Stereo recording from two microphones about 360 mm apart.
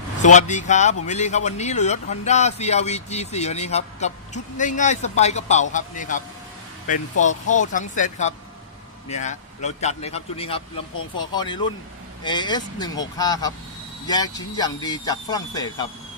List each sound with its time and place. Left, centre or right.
0.3 s a man's voice: centre